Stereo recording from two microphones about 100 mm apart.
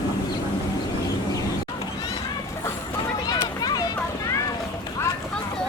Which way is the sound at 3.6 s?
40° left (ahead or behind).